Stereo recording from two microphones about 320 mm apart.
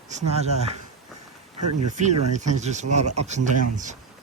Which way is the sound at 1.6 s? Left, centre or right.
Right.